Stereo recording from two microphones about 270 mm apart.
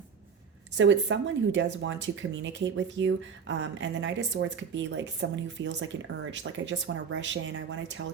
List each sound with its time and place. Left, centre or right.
0.8 s speech: right